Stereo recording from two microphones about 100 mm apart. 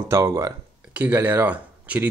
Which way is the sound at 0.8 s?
15° right (ahead or behind).